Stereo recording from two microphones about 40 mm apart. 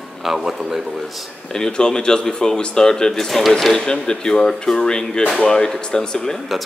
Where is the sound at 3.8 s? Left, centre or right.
Centre.